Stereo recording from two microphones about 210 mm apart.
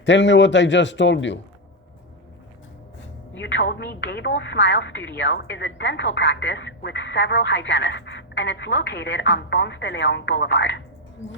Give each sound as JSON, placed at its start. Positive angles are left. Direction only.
{"t": 0.0, "sound": "speech", "side_deg": 60}
{"t": 3.3, "sound": "speech", "side_deg": 60}